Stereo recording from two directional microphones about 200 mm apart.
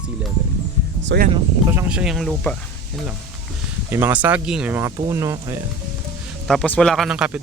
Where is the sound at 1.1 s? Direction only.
65° right (ahead or behind).